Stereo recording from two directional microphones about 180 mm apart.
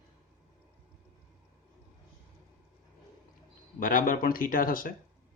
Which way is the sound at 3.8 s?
50° left (ahead or behind).